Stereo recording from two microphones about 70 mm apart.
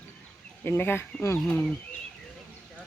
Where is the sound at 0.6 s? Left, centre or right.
Left.